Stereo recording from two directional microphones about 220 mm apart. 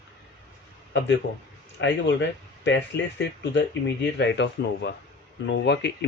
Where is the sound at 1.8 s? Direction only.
55° left (ahead or behind).